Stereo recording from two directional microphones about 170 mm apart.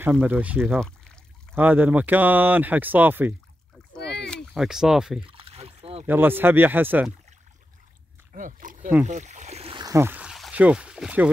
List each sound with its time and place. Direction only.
0.0 s speech: 10° right (ahead or behind)
0.7 s a sound: 5° left (ahead or behind)
1.5 s speech: 10° right (ahead or behind)
4.3 s speech: centre (ahead or behind)
5.2 s rowboat: 30° right (ahead or behind)
6.0 s speech: 10° right (ahead or behind)
8.3 s speech: 50° right (ahead or behind)
9.0 s boat: 45° right (ahead or behind)
9.8 s speech: 15° right (ahead or behind)